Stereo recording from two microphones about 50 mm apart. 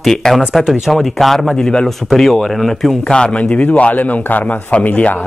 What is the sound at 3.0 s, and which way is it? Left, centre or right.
A man's voice, centre.